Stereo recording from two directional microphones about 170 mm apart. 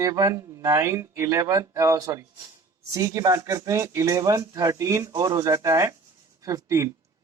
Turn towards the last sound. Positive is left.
turn(degrees=-20)  # may be behind; listen again after turning